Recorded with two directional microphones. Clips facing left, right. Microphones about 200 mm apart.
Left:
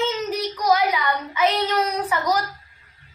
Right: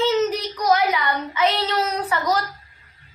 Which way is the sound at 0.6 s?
10° left (ahead or behind).